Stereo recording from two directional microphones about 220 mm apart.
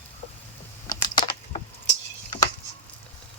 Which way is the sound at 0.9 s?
20° left (ahead or behind).